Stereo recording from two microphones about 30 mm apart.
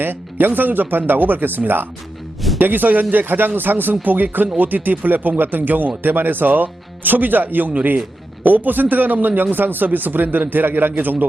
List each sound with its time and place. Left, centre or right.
0.1 s a man's voice: right